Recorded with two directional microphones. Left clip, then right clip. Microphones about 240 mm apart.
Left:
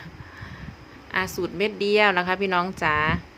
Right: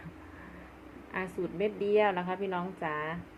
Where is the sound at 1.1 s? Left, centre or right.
Left.